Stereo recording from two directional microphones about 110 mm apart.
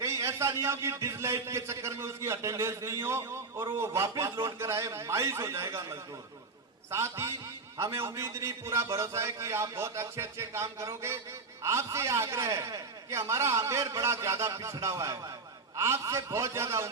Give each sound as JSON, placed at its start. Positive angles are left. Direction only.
{"t": 0.0, "sound": "a man's voice", "side_deg": -25}